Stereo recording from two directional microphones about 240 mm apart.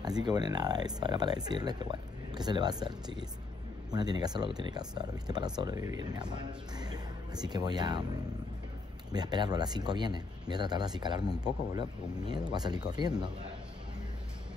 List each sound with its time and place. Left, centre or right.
0.0 s speech: centre
9.1 s speech: centre